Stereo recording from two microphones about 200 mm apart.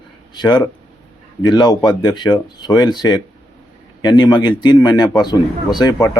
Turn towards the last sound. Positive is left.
turn(degrees=20)  # may be behind; listen again after turning